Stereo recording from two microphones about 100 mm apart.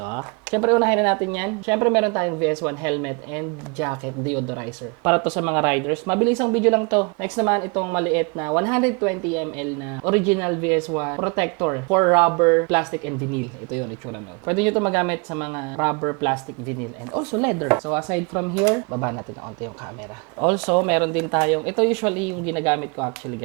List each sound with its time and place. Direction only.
0.0 s speech: 15° right (ahead or behind)
14.4 s speech: 10° right (ahead or behind)
18.9 s speech: 25° right (ahead or behind)
20.4 s speech: 10° right (ahead or behind)